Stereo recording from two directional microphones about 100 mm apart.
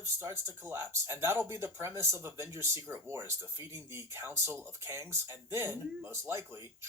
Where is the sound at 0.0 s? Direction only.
25° right (ahead or behind).